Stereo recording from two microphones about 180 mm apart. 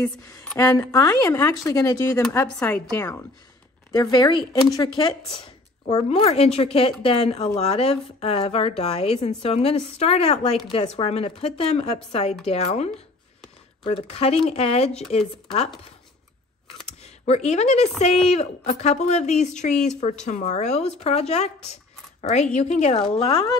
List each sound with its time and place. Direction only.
0.0 s a woman's voice: 5° left (ahead or behind)
0.7 s speech: 15° left (ahead or behind)
3.9 s a woman's voice: 25° left (ahead or behind)
17.3 s a woman's voice: 40° left (ahead or behind)
22.6 s speech: 35° left (ahead or behind)